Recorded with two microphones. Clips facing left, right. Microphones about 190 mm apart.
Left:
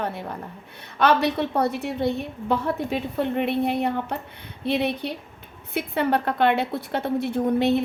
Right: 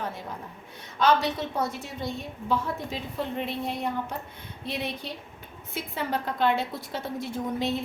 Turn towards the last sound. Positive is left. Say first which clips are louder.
# left 8 dB
turn(degrees=65)  # may be behind; listen again after turning